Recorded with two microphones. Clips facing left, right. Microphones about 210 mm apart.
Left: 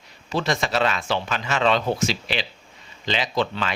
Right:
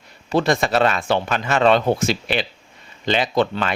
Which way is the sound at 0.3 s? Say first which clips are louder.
Right 6 dB; 55° right (ahead or behind).